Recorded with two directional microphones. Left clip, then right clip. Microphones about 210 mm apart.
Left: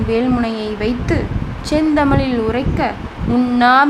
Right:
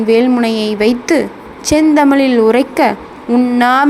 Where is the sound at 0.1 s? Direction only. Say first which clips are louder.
Right 6 dB; 15° right (ahead or behind).